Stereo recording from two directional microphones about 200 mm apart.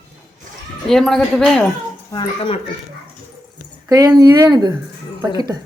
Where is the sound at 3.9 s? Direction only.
20° right (ahead or behind).